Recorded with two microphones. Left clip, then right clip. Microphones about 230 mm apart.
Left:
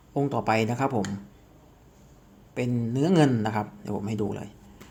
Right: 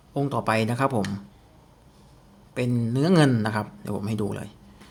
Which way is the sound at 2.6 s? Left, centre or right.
Right.